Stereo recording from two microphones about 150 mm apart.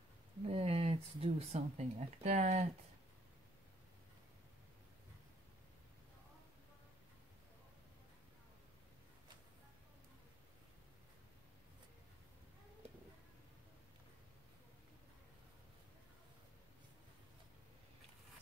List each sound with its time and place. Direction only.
0.5 s speech: 40° right (ahead or behind)